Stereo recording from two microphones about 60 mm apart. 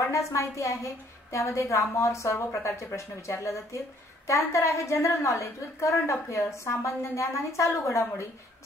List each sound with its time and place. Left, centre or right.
0.0 s a woman's voice: left